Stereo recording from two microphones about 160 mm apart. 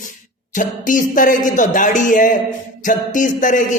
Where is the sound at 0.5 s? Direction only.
55° left (ahead or behind).